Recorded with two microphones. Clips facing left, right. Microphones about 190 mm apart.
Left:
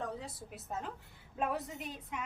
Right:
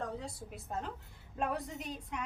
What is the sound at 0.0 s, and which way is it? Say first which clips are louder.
A woman's voice: right 1 dB; centre (ahead or behind).